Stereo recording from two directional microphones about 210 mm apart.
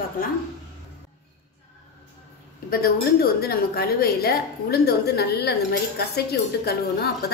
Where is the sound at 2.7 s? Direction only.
45° left (ahead or behind).